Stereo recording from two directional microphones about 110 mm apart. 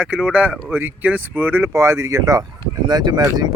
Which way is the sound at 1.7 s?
25° right (ahead or behind).